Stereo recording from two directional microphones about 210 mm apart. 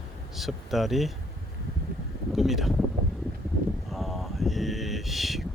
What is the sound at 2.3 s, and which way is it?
Speech, centre (ahead or behind).